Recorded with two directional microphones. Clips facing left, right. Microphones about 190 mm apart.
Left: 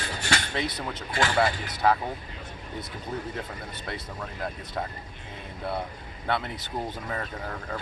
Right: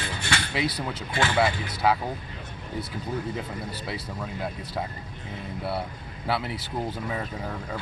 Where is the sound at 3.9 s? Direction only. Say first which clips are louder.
Left 1 dB; 5° right (ahead or behind).